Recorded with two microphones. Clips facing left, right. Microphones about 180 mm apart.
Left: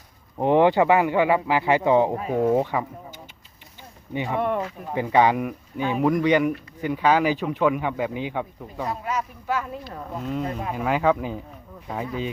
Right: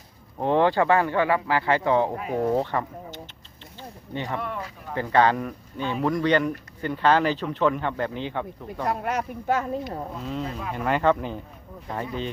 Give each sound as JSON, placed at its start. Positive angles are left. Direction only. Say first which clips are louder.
{"t": 0.3, "sound": "speech", "louder": "left 3 dB", "side_deg": 15}
{"t": 4.4, "sound": "speech", "louder": "left 8 dB", "side_deg": 55}
{"t": 4.9, "sound": "speech", "louder": "left 1 dB", "side_deg": 15}
{"t": 8.9, "sound": "speech", "louder": "right 3 dB", "side_deg": -60}
{"t": 10.4, "sound": "speech", "louder": "left 3 dB", "side_deg": 45}
{"t": 10.8, "sound": "speech", "louder": "even", "side_deg": 5}